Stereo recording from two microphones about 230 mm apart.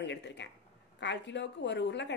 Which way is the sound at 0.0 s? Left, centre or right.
Left.